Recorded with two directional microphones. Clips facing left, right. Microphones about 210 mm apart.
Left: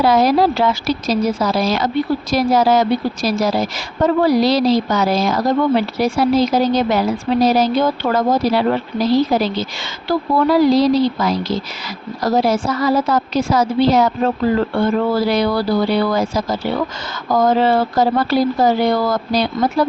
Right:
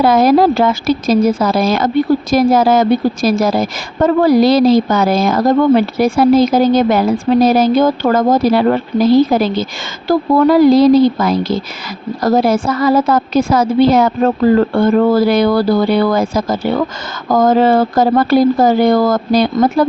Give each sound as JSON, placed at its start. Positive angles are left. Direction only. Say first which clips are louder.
{"t": 0.0, "sound": "a woman's voice", "louder": "right 4 dB", "side_deg": -50}